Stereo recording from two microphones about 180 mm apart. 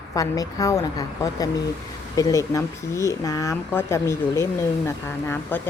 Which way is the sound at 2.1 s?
20° left (ahead or behind).